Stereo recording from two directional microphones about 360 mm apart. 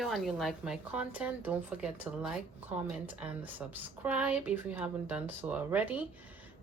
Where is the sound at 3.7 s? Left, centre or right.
Centre.